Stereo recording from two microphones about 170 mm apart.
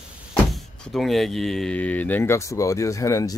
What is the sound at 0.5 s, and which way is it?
Speech, centre (ahead or behind).